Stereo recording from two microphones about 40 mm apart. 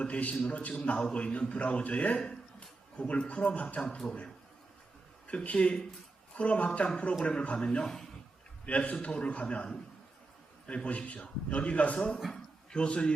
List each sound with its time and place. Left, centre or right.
0.0 s a man's voice: left
3.1 s a man's voice: left
3.8 s a man's voice: centre
5.3 s a man's voice: left
10.8 s a man's voice: left